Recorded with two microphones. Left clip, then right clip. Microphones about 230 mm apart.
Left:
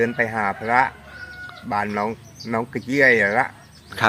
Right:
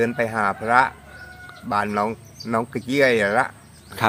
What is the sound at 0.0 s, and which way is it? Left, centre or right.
Speech, centre.